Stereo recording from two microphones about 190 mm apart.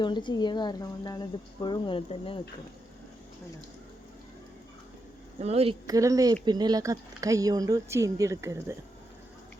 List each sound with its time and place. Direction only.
0.0 s speech: 25° left (ahead or behind)
5.4 s speech: 35° right (ahead or behind)
5.8 s speech: 15° right (ahead or behind)